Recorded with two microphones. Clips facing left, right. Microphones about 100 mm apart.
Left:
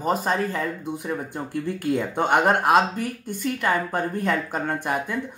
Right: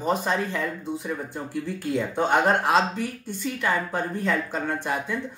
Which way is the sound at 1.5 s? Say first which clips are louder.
Left 3 dB; 55° left (ahead or behind).